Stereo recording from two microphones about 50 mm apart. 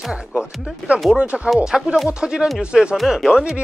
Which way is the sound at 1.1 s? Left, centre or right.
Right.